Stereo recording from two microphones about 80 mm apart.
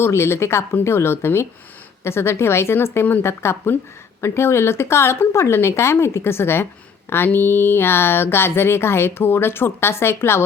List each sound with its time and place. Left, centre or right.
0.0 s speech: left